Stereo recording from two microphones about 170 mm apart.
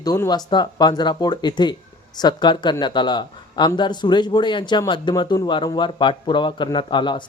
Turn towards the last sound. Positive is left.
turn(degrees=30)  # may be behind; listen again after turning